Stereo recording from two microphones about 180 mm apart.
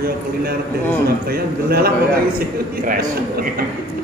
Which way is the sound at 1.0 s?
60° right (ahead or behind).